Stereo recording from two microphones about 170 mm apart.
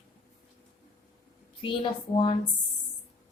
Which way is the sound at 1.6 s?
30° left (ahead or behind).